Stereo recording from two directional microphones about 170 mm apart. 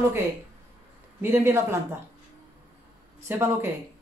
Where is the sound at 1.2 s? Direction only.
15° right (ahead or behind).